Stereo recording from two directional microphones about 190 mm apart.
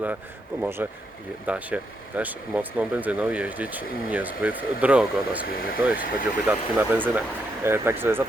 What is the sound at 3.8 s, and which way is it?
Speech, 50° left (ahead or behind).